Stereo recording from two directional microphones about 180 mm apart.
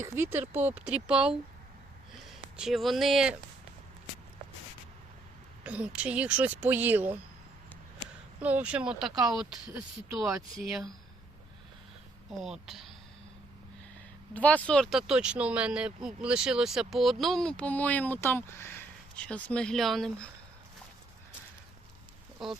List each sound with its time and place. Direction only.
0.0 s speech: 10° right (ahead or behind)
2.6 s speech: centre (ahead or behind)
5.6 s speech: 5° right (ahead or behind)
8.4 s speech: 10° right (ahead or behind)
12.3 s speech: centre (ahead or behind)
14.3 s speech: 10° left (ahead or behind)
22.4 s speech: centre (ahead or behind)